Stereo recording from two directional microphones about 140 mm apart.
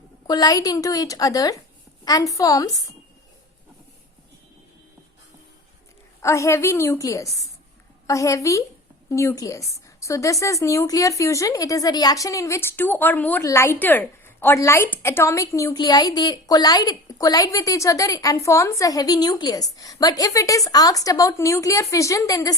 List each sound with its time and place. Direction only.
0.3 s a woman's voice: 30° left (ahead or behind)
6.2 s a woman's voice: 20° left (ahead or behind)